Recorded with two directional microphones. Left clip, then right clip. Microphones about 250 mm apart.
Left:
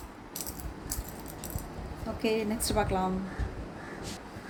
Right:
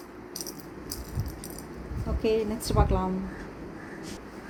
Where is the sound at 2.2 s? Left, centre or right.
Left.